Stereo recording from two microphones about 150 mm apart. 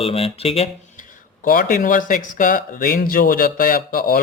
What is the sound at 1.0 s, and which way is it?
Speech, 65° left (ahead or behind).